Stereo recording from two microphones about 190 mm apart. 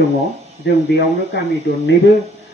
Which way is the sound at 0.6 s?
60° left (ahead or behind).